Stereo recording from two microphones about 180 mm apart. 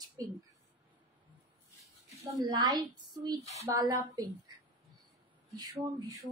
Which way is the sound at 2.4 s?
25° right (ahead or behind).